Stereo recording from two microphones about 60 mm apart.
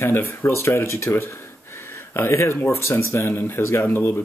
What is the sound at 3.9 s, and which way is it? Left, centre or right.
Speech, left.